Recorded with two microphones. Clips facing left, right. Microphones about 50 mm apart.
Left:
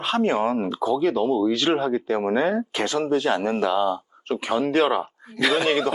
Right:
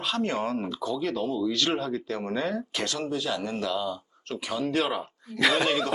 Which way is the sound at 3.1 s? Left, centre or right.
Left.